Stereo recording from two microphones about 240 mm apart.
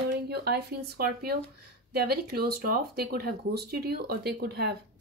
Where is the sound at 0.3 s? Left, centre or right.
Right.